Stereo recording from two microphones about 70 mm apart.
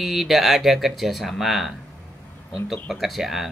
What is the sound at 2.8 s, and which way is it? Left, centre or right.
Speech, centre.